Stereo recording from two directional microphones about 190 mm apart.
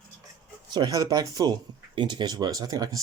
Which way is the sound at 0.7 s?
20° right (ahead or behind).